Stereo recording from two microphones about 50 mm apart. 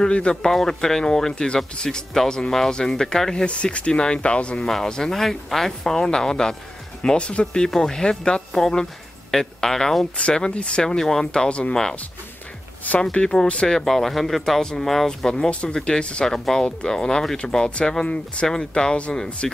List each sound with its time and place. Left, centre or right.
0.0 s speech: centre
3.4 s speech: left
4.6 s speech: centre
10.1 s speech: centre
11.4 s speech: left
13.0 s speech: centre
19.4 s speech: centre